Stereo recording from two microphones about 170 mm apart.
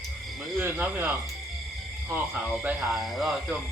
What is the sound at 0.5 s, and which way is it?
Speech, 10° right (ahead or behind).